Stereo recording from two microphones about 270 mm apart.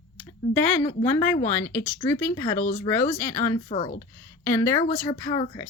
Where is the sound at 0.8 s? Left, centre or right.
Centre.